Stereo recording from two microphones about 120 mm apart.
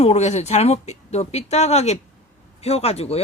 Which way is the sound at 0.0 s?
65° left (ahead or behind).